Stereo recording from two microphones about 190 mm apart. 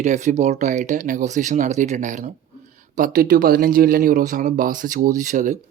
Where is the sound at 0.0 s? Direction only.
35° right (ahead or behind).